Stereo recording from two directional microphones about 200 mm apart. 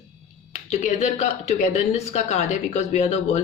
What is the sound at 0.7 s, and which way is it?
Speech, 35° left (ahead or behind).